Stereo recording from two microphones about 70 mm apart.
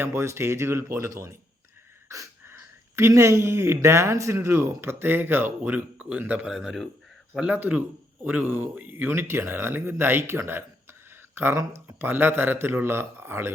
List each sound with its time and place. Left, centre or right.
0.0 s speech: right
2.4 s a sound: right
3.1 s a man's voice: right
4.4 s speech: right
6.0 s speech: centre
6.5 s speech: centre
7.3 s speech: centre